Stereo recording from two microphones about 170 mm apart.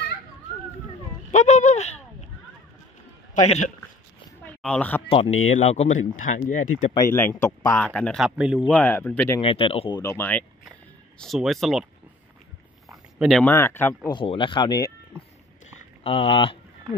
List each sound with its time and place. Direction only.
1.3 s speech: 45° left (ahead or behind)
3.4 s speech: 40° left (ahead or behind)
4.6 s speech: 5° left (ahead or behind)
5.1 s speech: 40° left (ahead or behind)
7.1 s speech: 15° left (ahead or behind); by 8.6 s 5° right (ahead or behind)
8.6 s speech: 10° left (ahead or behind)
9.4 s speech: 35° left (ahead or behind)
10.0 s speech: 10° left (ahead or behind)
11.1 s speech: centre (ahead or behind)
12.9 s a sound: centre (ahead or behind)
13.5 s speech: 15° left (ahead or behind)
14.1 s speech: 30° left (ahead or behind)
16.0 s speech: 35° left (ahead or behind)